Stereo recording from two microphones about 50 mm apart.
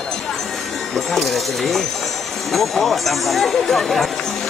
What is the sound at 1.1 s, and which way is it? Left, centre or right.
Speech, centre.